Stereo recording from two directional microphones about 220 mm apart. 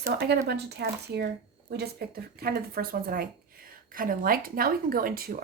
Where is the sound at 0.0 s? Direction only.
50° right (ahead or behind).